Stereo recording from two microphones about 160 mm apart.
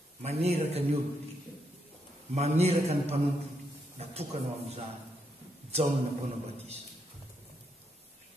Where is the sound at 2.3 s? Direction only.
40° right (ahead or behind).